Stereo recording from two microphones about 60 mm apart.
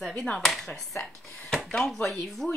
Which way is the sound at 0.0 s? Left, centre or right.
Centre.